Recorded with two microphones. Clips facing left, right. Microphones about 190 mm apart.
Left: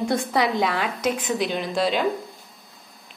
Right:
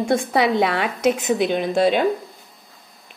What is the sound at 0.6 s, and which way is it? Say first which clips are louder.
Speech: right 3 dB; 65° right (ahead or behind).